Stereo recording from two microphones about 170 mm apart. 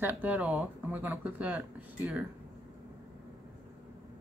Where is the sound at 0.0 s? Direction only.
10° right (ahead or behind).